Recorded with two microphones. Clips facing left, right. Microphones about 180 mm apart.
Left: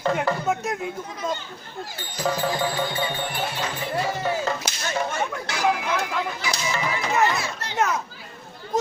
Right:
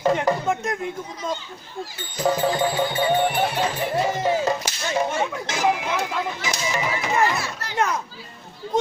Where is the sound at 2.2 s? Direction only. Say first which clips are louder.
Right 4 dB; 20° right (ahead or behind).